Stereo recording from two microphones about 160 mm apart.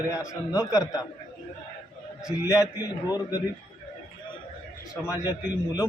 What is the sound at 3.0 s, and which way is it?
Speech, 25° left (ahead or behind).